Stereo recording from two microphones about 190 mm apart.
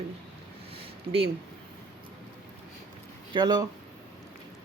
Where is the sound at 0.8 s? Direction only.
30° right (ahead or behind).